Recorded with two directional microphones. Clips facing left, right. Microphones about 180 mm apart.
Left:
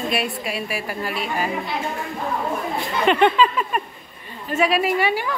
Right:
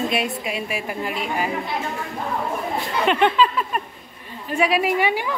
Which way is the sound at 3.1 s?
Centre (ahead or behind).